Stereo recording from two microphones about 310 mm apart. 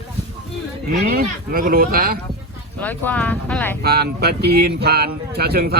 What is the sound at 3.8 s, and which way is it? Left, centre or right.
Speech, right.